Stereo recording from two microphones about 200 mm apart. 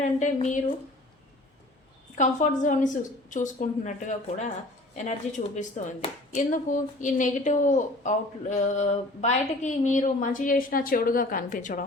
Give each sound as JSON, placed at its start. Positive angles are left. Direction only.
{"t": 0.0, "sound": "a woman's voice", "side_deg": 40}
{"t": 2.1, "sound": "a woman's voice", "side_deg": 40}